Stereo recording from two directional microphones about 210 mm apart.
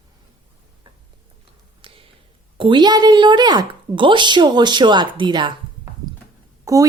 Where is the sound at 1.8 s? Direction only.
25° right (ahead or behind).